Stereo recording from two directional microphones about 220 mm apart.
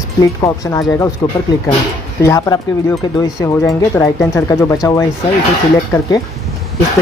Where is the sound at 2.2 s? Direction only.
15° left (ahead or behind).